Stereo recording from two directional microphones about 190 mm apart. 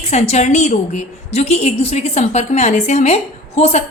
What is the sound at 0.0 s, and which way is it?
A woman's voice, 35° left (ahead or behind).